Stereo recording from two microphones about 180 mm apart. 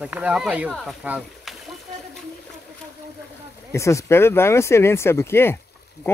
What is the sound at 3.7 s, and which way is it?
Speech, 15° left (ahead or behind).